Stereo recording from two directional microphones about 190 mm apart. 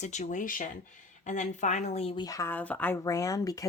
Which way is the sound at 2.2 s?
15° left (ahead or behind).